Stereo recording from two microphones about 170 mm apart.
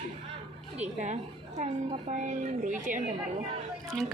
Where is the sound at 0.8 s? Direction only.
40° right (ahead or behind).